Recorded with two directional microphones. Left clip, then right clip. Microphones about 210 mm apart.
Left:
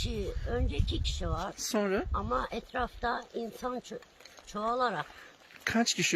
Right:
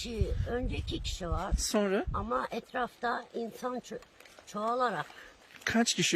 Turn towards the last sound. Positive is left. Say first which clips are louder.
# even
turn(degrees=-10)  # may be behind; listen again after turning